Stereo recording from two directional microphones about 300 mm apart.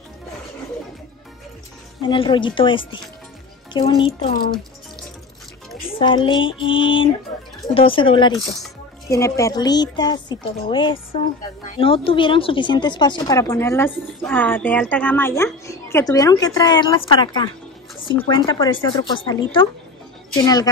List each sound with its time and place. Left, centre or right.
2.0 s speech: centre
5.9 s speech: centre